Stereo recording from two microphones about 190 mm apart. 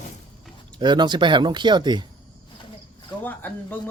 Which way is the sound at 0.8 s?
25° right (ahead or behind).